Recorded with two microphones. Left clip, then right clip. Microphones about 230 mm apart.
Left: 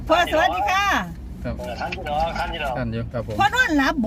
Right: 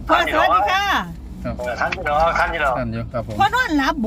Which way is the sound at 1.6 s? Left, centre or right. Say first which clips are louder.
Right 7 dB; centre.